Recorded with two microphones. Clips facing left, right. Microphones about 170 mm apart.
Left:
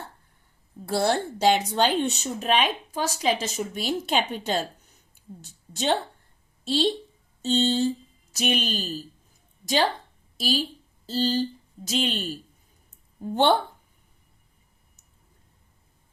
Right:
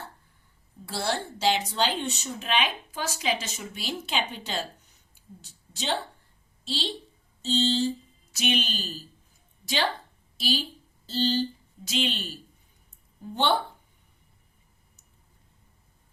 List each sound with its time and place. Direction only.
0.9 s a woman's voice: 50° left (ahead or behind)
8.3 s a woman's voice: 40° left (ahead or behind)
10.3 s a woman's voice: 40° left (ahead or behind)